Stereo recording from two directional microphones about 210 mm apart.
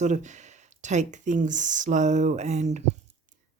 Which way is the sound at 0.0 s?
35° right (ahead or behind).